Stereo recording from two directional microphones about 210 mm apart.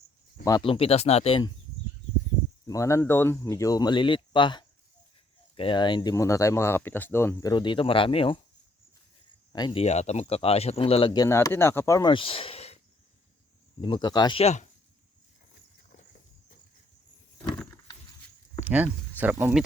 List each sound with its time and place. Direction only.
0.4 s speech: 20° left (ahead or behind)
2.6 s speech: 15° left (ahead or behind)
9.5 s speech: 20° left (ahead or behind)
9.8 s speech: 30° left (ahead or behind)
13.8 s speech: 20° left (ahead or behind)
17.3 s a sound: 15° left (ahead or behind)
18.6 s speech: 5° right (ahead or behind)